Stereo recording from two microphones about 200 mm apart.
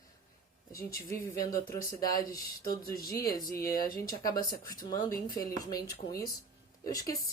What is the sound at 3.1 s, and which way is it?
Speech, 20° left (ahead or behind).